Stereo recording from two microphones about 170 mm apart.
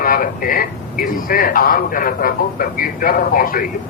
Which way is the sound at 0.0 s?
55° left (ahead or behind).